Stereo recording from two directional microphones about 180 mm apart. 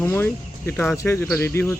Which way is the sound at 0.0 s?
15° left (ahead or behind).